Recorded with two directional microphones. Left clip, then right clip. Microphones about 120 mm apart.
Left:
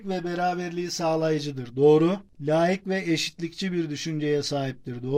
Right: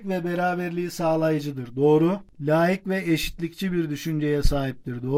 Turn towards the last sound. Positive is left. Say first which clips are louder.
# right 2 dB
turn(degrees=-30)  # may be behind; listen again after turning